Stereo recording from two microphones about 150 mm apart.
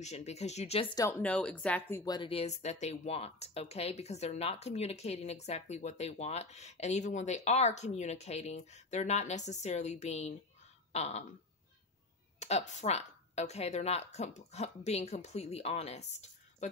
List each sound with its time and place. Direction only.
0.0 s speech: 50° left (ahead or behind)
1.2 s speech: 10° left (ahead or behind)
2.0 s speech: 35° left (ahead or behind); by 10.3 s 50° left (ahead or behind)
10.9 s a sound: 45° left (ahead or behind)
12.4 s speech: 50° left (ahead or behind)